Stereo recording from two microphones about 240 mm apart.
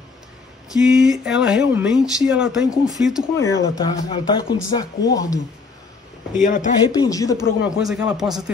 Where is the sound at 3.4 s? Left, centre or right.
Centre.